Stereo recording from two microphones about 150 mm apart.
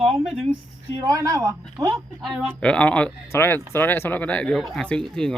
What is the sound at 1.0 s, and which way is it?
Speech, 25° right (ahead or behind).